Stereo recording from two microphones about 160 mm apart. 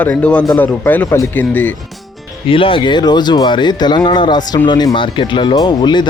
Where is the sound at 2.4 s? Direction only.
35° left (ahead or behind).